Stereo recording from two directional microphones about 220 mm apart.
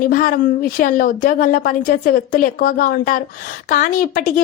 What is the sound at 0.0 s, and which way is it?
A woman's voice, 40° left (ahead or behind).